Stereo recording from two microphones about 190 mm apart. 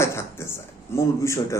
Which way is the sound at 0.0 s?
15° left (ahead or behind).